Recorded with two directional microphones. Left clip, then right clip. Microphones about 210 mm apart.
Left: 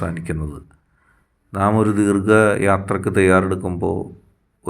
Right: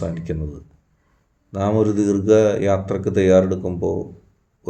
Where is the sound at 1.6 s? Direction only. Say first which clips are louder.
Left 1 dB; 20° left (ahead or behind).